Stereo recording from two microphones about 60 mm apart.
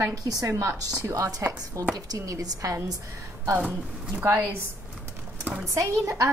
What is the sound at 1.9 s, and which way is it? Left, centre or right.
Speech, right.